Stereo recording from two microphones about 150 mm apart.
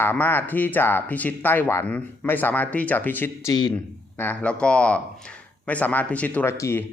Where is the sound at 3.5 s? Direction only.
25° left (ahead or behind).